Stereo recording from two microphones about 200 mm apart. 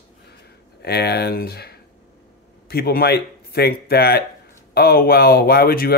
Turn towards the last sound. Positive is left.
turn(degrees=50)  # may be behind; listen again after turning